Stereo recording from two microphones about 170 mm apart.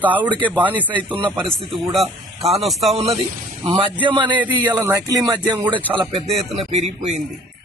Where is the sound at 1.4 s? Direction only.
5° left (ahead or behind).